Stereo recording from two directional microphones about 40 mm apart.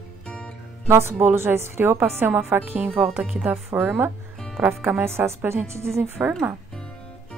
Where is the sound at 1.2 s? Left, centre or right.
Right.